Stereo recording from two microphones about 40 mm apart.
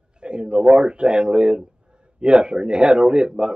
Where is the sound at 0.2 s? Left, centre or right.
Right.